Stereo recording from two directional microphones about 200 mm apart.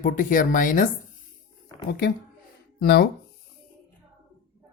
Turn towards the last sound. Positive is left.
turn(degrees=50)  # may be behind; listen again after turning